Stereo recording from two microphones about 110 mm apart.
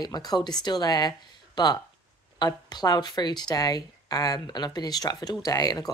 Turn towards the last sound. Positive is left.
turn(degrees=35)  # may be behind; listen again after turning